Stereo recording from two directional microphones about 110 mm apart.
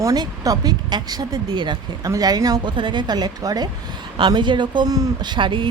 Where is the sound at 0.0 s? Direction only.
35° right (ahead or behind).